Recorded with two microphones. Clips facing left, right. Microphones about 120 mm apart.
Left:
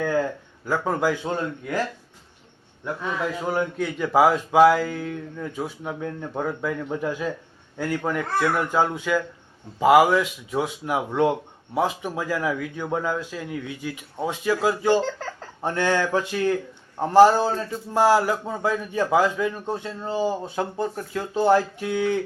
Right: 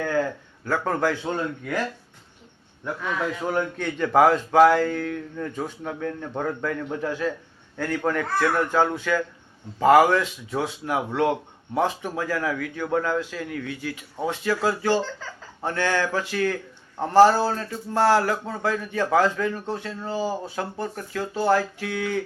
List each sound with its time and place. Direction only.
0.0 s a man's voice: 15° left (ahead or behind)
3.5 s a man's voice: 10° left (ahead or behind)
15.0 s speech: 65° left (ahead or behind)
15.6 s a man's voice: 20° left (ahead or behind)